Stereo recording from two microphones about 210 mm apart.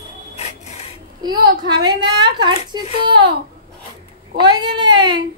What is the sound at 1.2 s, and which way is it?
A child's voice, 20° right (ahead or behind).